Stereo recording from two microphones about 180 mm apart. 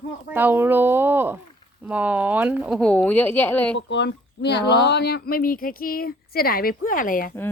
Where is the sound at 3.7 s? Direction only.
75° left (ahead or behind); by 7.3 s 50° left (ahead or behind).